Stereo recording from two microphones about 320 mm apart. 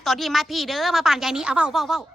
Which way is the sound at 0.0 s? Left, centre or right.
Centre.